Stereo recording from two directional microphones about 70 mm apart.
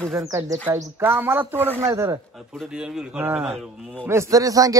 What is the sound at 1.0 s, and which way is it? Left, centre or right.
Speech, right.